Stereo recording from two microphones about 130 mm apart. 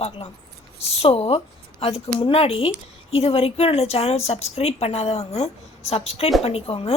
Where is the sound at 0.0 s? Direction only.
50° left (ahead or behind).